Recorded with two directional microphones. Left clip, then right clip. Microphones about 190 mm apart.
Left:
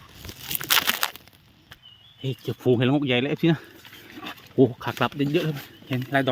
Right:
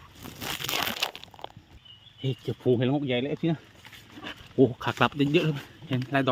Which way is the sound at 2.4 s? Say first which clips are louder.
Left 3 dB; 20° left (ahead or behind).